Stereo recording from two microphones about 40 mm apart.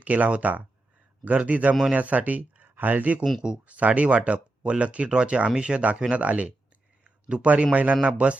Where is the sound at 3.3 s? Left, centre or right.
Centre.